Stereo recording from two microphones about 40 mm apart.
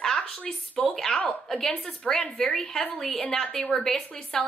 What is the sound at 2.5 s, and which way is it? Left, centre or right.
A woman's voice, centre.